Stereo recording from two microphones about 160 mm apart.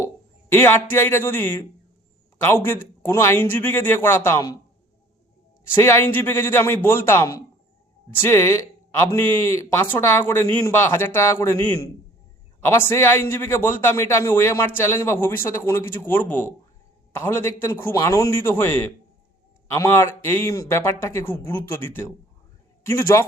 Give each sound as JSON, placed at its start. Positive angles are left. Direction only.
{"t": 0.5, "sound": "speech", "side_deg": 15}
{"t": 3.0, "sound": "speech", "side_deg": 15}
{"t": 5.7, "sound": "speech", "side_deg": 15}